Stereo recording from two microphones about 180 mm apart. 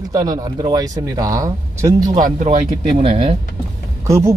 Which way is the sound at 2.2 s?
45° right (ahead or behind).